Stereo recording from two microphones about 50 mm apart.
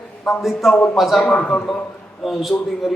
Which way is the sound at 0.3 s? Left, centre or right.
Centre.